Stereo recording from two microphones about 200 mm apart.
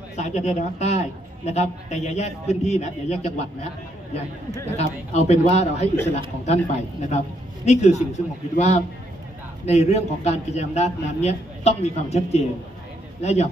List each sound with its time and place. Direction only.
0.1 s a man's voice: 35° left (ahead or behind)
4.7 s a man's voice: 35° left (ahead or behind)